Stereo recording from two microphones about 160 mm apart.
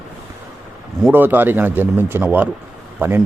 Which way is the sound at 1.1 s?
10° right (ahead or behind).